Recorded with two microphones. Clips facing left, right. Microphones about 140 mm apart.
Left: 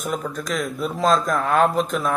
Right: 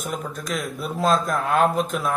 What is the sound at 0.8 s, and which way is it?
Speech, centre (ahead or behind).